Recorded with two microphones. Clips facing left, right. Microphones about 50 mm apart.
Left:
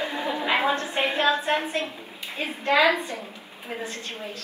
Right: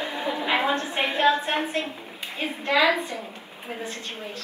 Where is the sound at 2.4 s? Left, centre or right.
Left.